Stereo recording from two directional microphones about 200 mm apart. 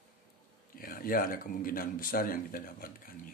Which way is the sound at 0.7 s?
45° left (ahead or behind).